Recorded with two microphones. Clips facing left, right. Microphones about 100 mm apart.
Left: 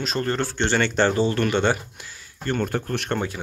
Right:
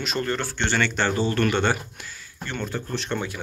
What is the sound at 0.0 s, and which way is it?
Speech, 35° left (ahead or behind).